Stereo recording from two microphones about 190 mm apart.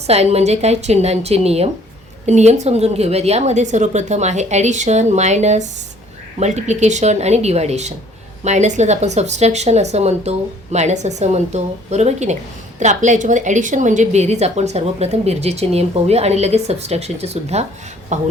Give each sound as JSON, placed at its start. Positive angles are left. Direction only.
{"t": 0.1, "sound": "a woman's voice", "side_deg": -35}